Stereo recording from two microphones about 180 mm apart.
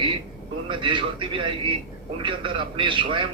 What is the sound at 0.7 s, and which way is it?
A man's voice, 25° right (ahead or behind).